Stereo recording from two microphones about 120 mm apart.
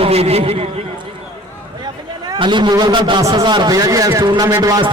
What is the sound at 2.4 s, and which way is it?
A man's voice, 40° right (ahead or behind).